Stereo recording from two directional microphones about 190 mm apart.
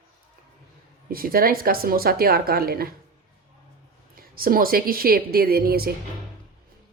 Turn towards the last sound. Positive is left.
turn(degrees=-50)  # may be behind; listen again after turning